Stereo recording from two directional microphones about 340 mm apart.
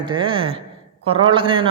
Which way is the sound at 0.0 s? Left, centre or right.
Centre.